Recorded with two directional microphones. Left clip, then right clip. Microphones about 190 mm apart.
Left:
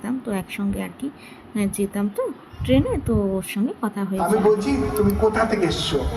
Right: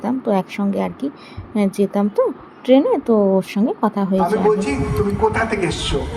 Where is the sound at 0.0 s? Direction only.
5° right (ahead or behind).